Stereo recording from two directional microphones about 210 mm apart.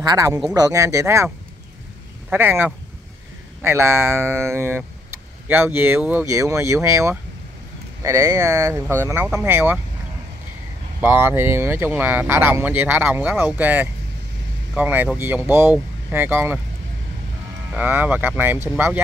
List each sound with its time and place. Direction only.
0.0 s speech: 15° right (ahead or behind)
11.0 s speech: 10° right (ahead or behind)
17.7 s speech: 10° right (ahead or behind)